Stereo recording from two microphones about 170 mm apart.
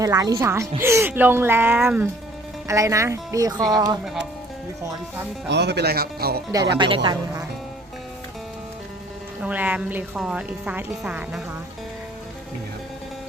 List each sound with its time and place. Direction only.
0.0 s a woman's voice: 20° right (ahead or behind)
5.5 s speech: 80° right; by 6.4 s 65° right (ahead or behind)
6.5 s speech: 25° right (ahead or behind)
9.4 s a woman's voice: 10° right (ahead or behind)